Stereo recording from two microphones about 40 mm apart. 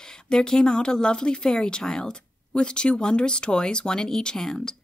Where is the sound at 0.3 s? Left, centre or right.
Centre.